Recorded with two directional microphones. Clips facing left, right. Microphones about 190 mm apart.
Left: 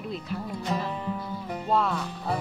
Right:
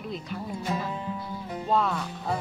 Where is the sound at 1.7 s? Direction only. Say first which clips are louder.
Even; centre (ahead or behind).